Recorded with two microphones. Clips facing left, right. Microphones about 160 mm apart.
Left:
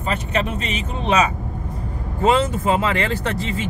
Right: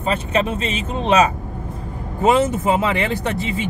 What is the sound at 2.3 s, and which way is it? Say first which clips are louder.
Speech: right 2 dB; 20° right (ahead or behind).